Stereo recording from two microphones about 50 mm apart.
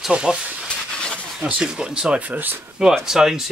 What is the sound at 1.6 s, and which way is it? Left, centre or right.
Speech, centre.